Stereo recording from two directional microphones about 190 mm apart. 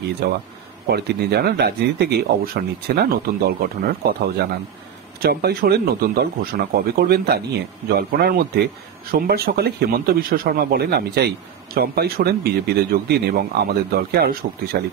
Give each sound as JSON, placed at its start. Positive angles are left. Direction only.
{"t": 0.2, "sound": "speech", "side_deg": -55}